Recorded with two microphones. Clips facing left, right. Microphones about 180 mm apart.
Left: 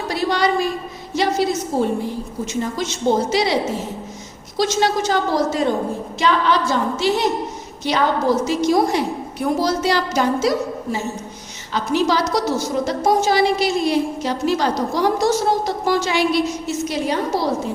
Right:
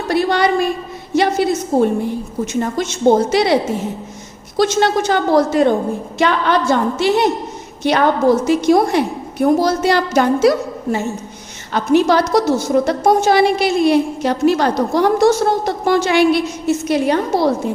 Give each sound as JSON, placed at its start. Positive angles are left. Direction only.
{"t": 0.1, "sound": "a woman's voice", "side_deg": -60}
{"t": 11.7, "sound": "a woman's voice", "side_deg": -55}